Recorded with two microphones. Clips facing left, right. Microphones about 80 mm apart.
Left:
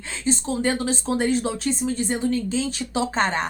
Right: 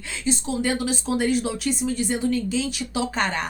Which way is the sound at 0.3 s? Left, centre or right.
Left.